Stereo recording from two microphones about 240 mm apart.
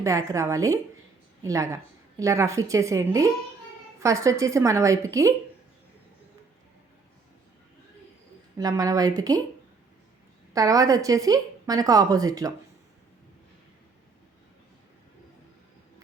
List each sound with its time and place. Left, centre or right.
0.0 s a woman's voice: centre
8.5 s a woman's voice: centre
10.5 s a woman's voice: centre